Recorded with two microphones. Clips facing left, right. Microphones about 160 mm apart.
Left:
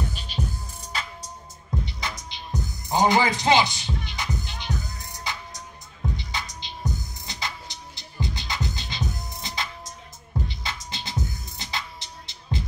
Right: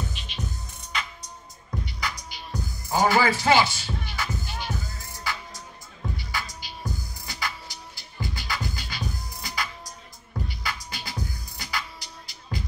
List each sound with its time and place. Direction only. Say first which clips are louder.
0.1 s music: left 4 dB; 35° left (ahead or behind)